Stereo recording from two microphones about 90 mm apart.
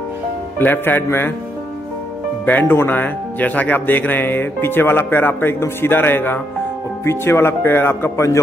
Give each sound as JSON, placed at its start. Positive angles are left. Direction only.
{"t": 0.6, "sound": "speech", "side_deg": 20}
{"t": 2.4, "sound": "speech", "side_deg": 20}